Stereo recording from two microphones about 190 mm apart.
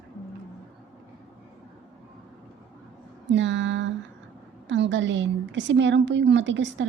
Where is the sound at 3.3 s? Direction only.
70° right (ahead or behind).